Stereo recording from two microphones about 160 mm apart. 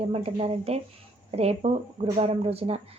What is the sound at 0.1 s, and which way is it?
A woman's voice, 40° right (ahead or behind).